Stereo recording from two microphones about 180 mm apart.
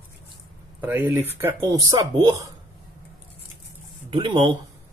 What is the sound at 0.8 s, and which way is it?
Speech, 10° right (ahead or behind).